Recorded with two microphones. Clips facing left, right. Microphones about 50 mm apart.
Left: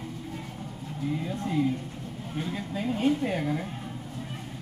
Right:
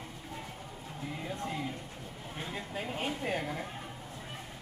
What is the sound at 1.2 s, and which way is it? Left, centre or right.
Speech, right.